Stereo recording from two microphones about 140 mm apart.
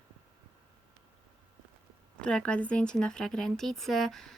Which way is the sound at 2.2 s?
5° left (ahead or behind).